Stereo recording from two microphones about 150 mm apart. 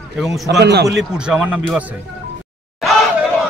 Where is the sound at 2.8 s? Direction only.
Centre (ahead or behind).